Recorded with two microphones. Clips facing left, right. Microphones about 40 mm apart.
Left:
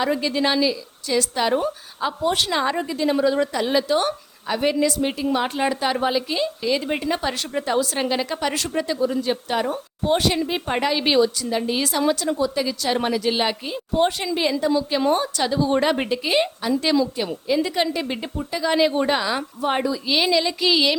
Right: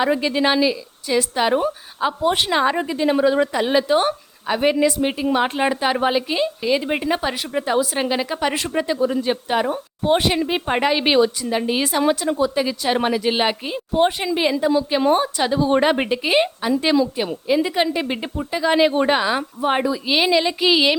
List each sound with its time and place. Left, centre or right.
0.0 s a woman's voice: right